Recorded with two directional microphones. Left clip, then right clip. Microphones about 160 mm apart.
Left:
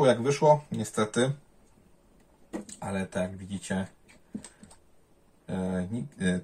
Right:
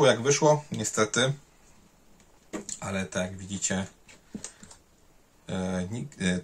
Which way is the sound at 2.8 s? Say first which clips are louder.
Even; 15° right (ahead or behind).